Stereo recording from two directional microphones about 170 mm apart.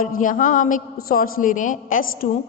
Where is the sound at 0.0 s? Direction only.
50° left (ahead or behind).